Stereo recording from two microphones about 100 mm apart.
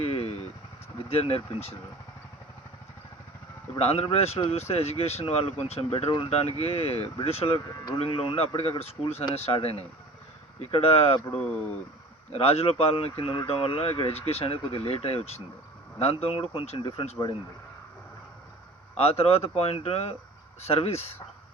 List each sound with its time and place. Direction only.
0.0 s vehicle: 90° left
1.1 s speech: 80° left
3.8 s speech: 90° left
8.8 s speech: 90° left
11.3 s speech: 10° left (ahead or behind)
12.3 s speech: 90° left
18.9 s speech: 85° left